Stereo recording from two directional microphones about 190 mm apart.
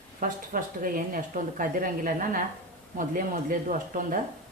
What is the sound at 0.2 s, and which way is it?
A woman's voice, 45° right (ahead or behind).